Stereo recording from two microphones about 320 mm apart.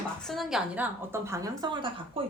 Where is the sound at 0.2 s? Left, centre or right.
Centre.